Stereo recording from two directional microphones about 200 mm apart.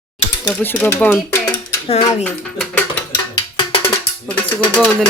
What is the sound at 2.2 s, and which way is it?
Speech, 5° left (ahead or behind).